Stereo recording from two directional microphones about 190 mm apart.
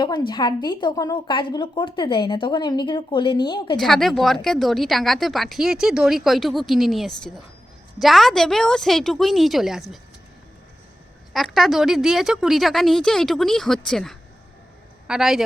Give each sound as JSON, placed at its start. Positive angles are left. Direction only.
{"t": 0.0, "sound": "a woman's voice", "side_deg": 25}
{"t": 3.8, "sound": "a woman's voice", "side_deg": 0}
{"t": 11.3, "sound": "a woman's voice", "side_deg": 0}